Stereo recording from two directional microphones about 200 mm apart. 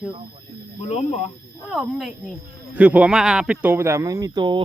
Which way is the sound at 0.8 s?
30° left (ahead or behind).